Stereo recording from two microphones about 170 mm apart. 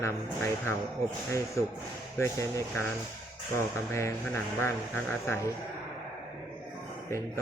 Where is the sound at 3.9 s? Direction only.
15° left (ahead or behind).